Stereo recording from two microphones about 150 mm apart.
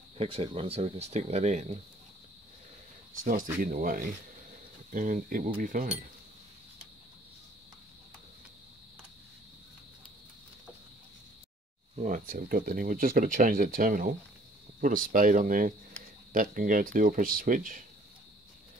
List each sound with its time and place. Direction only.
0.2 s speech: 40° right (ahead or behind)
3.6 s speech: 65° right (ahead or behind)
11.9 s speech: 55° right (ahead or behind)